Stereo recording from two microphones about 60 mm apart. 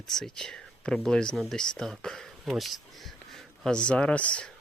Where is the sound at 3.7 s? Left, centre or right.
Centre.